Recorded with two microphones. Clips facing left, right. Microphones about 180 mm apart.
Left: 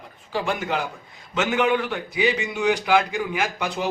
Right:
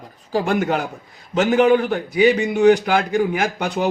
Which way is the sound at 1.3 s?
40° right (ahead or behind).